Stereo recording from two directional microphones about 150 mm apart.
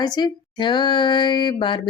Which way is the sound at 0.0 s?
30° left (ahead or behind).